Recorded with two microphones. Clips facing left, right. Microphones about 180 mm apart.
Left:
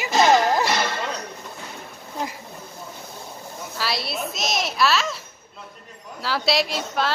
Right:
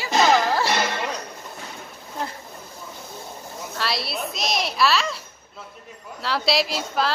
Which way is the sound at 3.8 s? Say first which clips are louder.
Even; centre (ahead or behind).